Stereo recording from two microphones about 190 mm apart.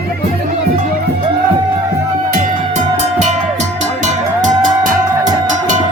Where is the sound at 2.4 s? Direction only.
40° right (ahead or behind).